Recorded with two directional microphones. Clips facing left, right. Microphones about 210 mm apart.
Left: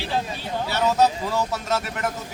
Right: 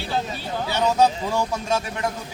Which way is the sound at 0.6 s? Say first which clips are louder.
Right 1 dB; 15° right (ahead or behind).